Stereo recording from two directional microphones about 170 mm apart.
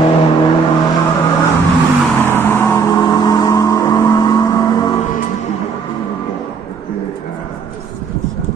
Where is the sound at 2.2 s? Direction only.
10° left (ahead or behind).